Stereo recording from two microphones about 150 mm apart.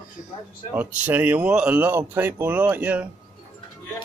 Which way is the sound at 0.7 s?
10° right (ahead or behind).